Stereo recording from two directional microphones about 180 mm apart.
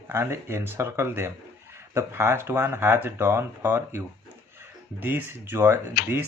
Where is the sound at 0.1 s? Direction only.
15° right (ahead or behind).